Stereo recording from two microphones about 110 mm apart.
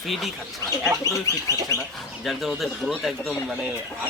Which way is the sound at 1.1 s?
30° right (ahead or behind).